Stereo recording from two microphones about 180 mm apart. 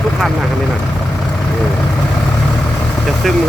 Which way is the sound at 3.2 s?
Centre (ahead or behind).